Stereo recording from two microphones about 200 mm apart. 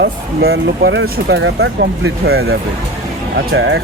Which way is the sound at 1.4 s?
65° right (ahead or behind).